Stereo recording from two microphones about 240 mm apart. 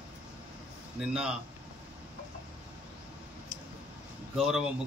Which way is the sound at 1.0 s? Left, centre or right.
Centre.